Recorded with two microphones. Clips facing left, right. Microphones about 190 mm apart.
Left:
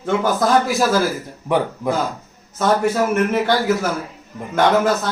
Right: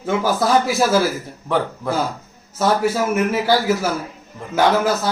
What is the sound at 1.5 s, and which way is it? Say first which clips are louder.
Speech: left 2 dB; 15° left (ahead or behind).